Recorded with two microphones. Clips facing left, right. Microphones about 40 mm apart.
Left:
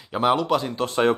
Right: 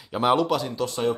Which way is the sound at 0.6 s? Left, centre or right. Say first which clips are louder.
Left 4 dB; left.